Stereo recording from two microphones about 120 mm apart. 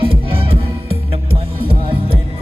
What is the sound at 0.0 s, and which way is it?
Music, 50° right (ahead or behind).